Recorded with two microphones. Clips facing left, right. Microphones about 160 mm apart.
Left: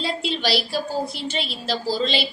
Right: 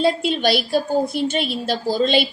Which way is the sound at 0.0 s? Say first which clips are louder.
Right 7 dB; 50° right (ahead or behind).